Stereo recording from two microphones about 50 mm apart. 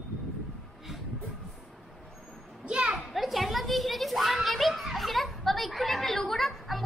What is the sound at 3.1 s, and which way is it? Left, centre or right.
A child's voice, centre.